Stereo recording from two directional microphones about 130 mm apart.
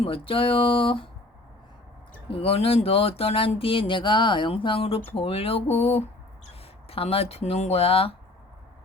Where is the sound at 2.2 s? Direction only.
45° left (ahead or behind).